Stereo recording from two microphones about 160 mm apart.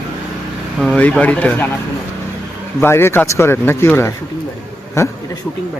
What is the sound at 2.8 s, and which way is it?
Speech, 15° left (ahead or behind).